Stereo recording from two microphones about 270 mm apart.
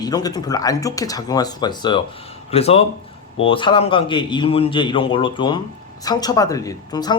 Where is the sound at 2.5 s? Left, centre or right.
Left.